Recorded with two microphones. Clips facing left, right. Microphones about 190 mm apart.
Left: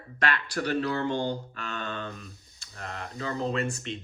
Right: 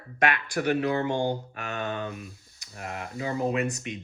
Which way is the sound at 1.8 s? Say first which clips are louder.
Right 4 dB; 15° right (ahead or behind).